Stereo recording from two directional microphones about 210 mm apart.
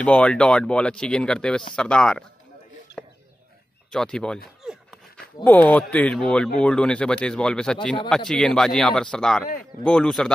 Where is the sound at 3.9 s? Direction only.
5° left (ahead or behind).